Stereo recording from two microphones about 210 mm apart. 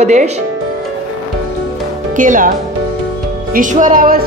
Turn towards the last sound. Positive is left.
turn(degrees=-40)  # may be behind; listen again after turning